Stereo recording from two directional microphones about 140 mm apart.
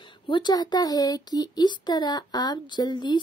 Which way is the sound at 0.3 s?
30° left (ahead or behind).